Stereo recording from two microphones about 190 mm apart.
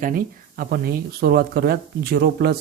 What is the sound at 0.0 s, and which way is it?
A man's voice, 50° right (ahead or behind).